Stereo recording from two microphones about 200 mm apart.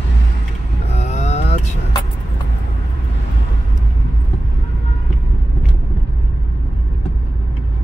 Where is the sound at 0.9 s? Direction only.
35° left (ahead or behind).